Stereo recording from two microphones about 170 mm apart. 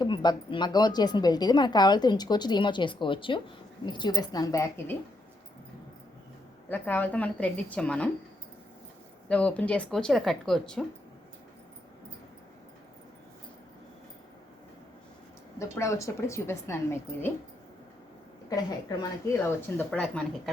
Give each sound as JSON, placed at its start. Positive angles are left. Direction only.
{"t": 0.0, "sound": "a woman's voice", "side_deg": 25}
{"t": 6.7, "sound": "a woman's voice", "side_deg": 10}
{"t": 9.3, "sound": "speech", "side_deg": 5}
{"t": 15.5, "sound": "a woman's voice", "side_deg": 15}
{"t": 18.4, "sound": "a woman's voice", "side_deg": 20}
{"t": 19.9, "sound": "speech", "side_deg": 5}